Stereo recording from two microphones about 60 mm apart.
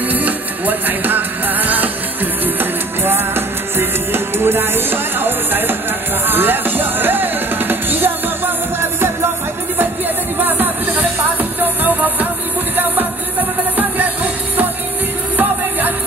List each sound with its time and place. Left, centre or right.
0.1 s music: right
10.4 s music: right
13.7 s music: right